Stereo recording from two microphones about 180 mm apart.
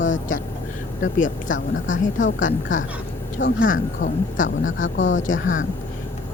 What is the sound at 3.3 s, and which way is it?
Speech, 90° left.